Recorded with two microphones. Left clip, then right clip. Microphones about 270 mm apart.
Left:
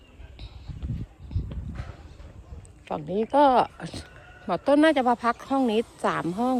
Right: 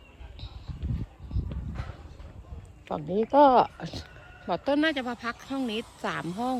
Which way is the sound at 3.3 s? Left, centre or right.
Left.